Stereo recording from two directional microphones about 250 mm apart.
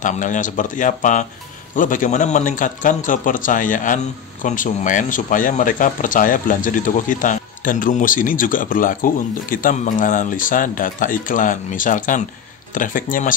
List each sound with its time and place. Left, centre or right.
0.0 s speech: left